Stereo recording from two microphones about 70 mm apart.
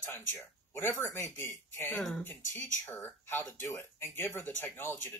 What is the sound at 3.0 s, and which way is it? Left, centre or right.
Speech, left.